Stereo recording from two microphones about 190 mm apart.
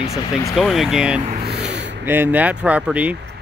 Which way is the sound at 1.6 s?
65° right (ahead or behind).